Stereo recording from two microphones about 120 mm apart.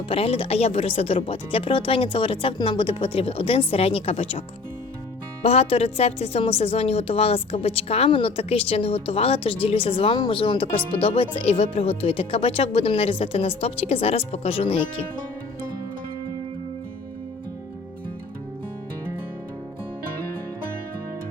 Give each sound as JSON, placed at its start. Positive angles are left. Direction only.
{"t": 0.1, "sound": "a woman's voice", "side_deg": 55}